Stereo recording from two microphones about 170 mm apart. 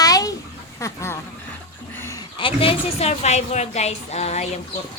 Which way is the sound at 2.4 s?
30° left (ahead or behind).